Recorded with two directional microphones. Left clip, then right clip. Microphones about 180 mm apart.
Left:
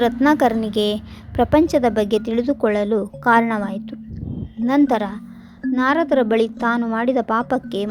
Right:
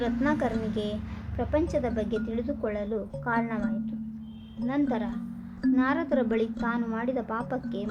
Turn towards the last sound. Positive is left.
turn(degrees=40)  # may be behind; listen again after turning